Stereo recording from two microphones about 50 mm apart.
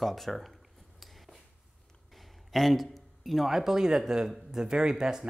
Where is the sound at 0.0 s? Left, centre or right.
Centre.